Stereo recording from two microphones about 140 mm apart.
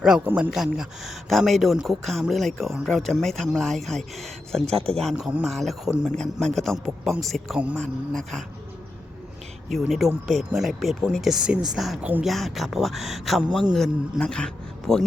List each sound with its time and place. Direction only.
0.3 s a man's voice: 15° right (ahead or behind)
0.5 s speech: centre (ahead or behind)
4.6 s speech: 45° right (ahead or behind)
4.9 s speech: centre (ahead or behind)
10.2 s speech: centre (ahead or behind)